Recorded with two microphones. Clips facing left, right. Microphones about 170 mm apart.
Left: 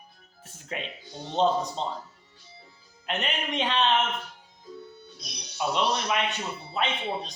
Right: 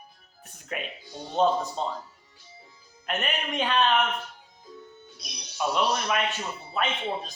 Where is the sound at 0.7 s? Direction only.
25° left (ahead or behind).